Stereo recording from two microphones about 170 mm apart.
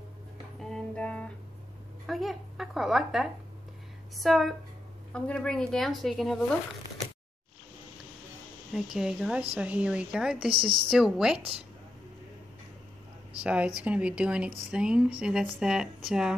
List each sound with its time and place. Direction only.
0.6 s music: 5° left (ahead or behind)
2.0 s a sound: centre (ahead or behind)
4.2 s speech: centre (ahead or behind)
8.7 s speech: 5° right (ahead or behind)
10.5 s a woman's voice: 30° right (ahead or behind)
10.9 s speech: centre (ahead or behind)
13.4 s speech: 5° right (ahead or behind)